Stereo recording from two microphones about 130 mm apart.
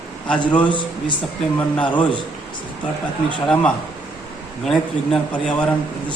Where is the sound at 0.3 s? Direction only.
10° left (ahead or behind).